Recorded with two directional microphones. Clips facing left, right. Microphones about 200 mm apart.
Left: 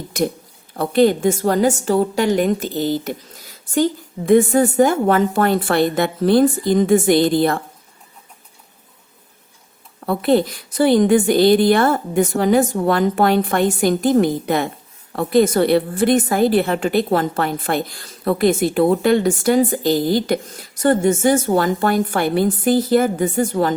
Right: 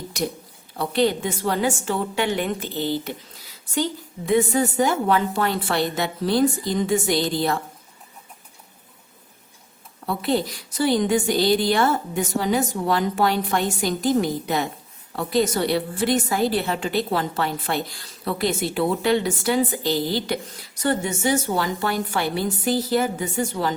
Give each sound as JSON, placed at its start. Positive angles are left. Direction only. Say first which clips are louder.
{"t": 0.1, "sound": "a woman's voice", "louder": "left 7 dB", "side_deg": 50}
{"t": 10.1, "sound": "a woman's voice", "louder": "left 7 dB", "side_deg": 55}